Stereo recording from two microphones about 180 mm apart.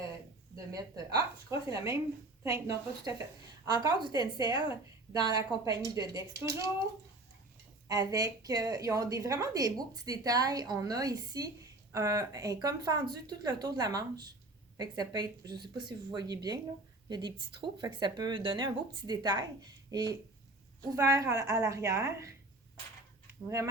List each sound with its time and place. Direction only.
0.7 s a woman's voice: 20° right (ahead or behind)
7.9 s a woman's voice: 20° right (ahead or behind)